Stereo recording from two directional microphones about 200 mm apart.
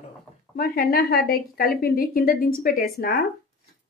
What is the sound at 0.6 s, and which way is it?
Speech, 50° left (ahead or behind).